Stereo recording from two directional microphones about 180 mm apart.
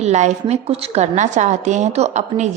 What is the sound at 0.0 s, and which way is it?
A woman's voice, 40° right (ahead or behind).